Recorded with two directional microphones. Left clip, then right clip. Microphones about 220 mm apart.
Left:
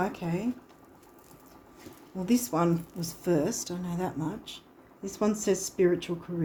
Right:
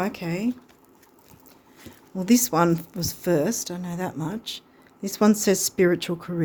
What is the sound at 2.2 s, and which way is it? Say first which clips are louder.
Speech: right 7 dB; 45° right (ahead or behind).